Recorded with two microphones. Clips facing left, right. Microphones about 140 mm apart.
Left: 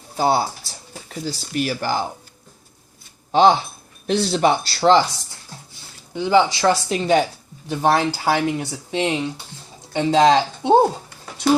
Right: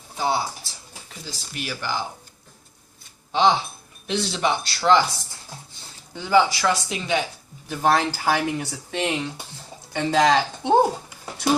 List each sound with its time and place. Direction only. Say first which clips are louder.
0.2 s speech: left 5 dB; 40° left (ahead or behind)
3.3 s speech: left 5 dB; 45° left (ahead or behind)
6.1 s speech: left 2 dB; 20° left (ahead or behind); by 7.3 s 40° left (ahead or behind)
7.7 s speech: left 2 dB; 20° left (ahead or behind)